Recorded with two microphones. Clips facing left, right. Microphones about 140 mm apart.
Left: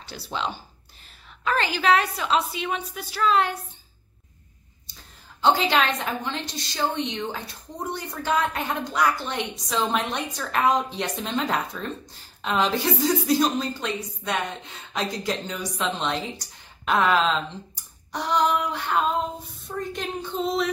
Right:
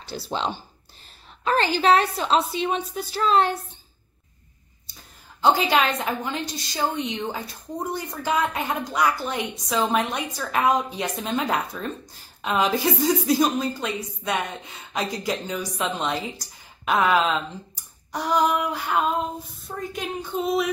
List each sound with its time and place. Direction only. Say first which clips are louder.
0.0 s a woman's voice: right 3 dB; 30° right (ahead or behind)
5.4 s a woman's voice: right 1 dB; 10° right (ahead or behind)